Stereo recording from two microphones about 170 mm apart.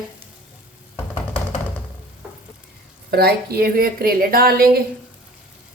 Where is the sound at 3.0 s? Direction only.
65° right (ahead or behind).